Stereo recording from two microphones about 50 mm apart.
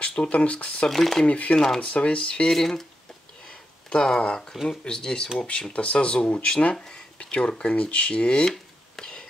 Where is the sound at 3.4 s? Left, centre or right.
Centre.